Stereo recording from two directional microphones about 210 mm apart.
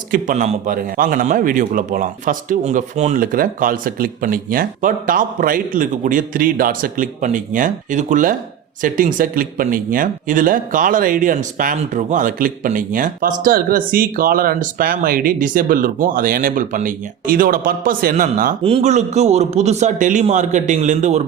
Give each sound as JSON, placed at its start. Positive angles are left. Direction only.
{"t": 0.1, "sound": "speech", "side_deg": -35}
{"t": 18.6, "sound": "speech", "side_deg": -30}